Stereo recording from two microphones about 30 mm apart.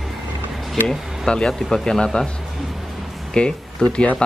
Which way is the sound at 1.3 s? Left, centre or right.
Left.